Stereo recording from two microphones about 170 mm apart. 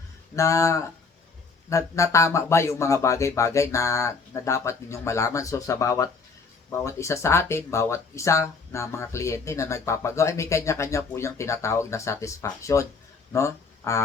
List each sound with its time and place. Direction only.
0.3 s speech: 20° left (ahead or behind)